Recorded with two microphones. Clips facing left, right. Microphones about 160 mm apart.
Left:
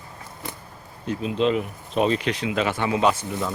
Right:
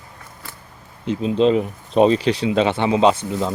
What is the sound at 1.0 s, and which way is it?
Speech, 25° right (ahead or behind).